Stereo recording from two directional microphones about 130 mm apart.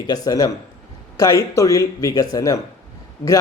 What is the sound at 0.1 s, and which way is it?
A man's voice, 30° left (ahead or behind).